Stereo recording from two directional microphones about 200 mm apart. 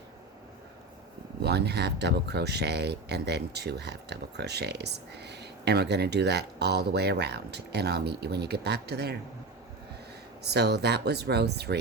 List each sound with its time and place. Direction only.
1.4 s speech: 55° right (ahead or behind)
10.4 s speech: 55° right (ahead or behind)